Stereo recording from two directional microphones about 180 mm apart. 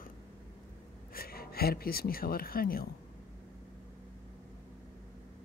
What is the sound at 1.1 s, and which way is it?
Speech, 55° left (ahead or behind).